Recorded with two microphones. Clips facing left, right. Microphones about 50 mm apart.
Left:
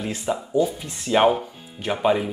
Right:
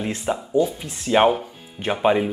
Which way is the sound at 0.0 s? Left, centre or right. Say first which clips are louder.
Right 1 dB; centre.